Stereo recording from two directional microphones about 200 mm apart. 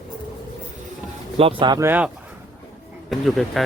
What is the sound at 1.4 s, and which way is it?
Speech, 25° right (ahead or behind).